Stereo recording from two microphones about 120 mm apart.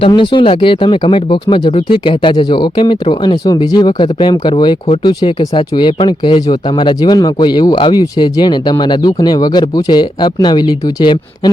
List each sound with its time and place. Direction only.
0.2 s speech: 45° left (ahead or behind)
1.7 s speech: 55° left (ahead or behind)